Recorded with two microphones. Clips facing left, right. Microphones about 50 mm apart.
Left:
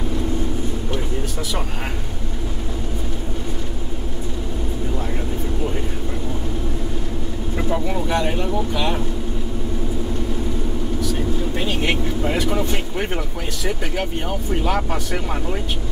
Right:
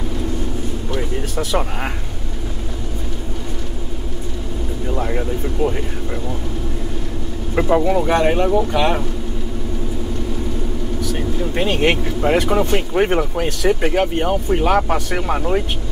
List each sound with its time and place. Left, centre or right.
4.9 s vehicle: right
7.5 s speech: right
11.6 s speech: right